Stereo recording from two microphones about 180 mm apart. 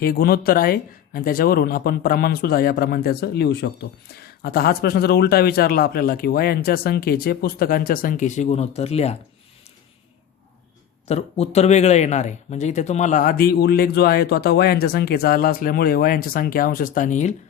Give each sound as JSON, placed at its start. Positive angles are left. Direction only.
{"t": 0.0, "sound": "speech", "side_deg": 55}
{"t": 11.1, "sound": "speech", "side_deg": 35}